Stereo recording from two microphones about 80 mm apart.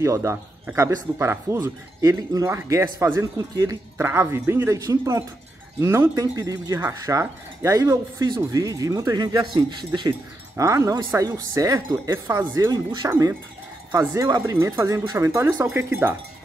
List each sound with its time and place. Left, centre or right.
0.0 s speech: right
4.0 s speech: right
4.8 s speech: right
6.3 s speech: right
10.5 s speech: right
12.7 s speech: right
13.9 s speech: right